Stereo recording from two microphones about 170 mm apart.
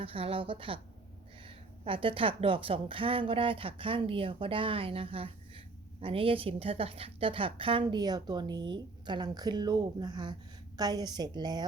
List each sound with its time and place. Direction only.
0.0 s a woman's voice: 30° right (ahead or behind)